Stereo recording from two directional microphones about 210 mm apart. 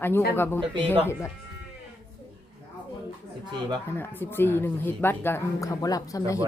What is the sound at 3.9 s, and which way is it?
Speech, 10° left (ahead or behind).